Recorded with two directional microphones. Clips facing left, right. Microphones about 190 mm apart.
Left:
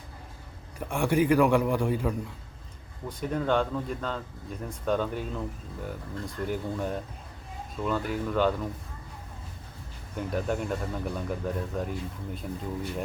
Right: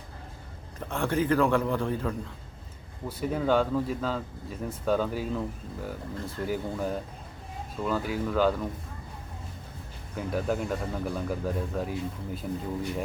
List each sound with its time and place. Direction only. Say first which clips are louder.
0.8 s a man's voice: left 3 dB; 15° left (ahead or behind)
3.1 s speech: right 1 dB; 5° right (ahead or behind)
10.2 s speech: right 1 dB; centre (ahead or behind)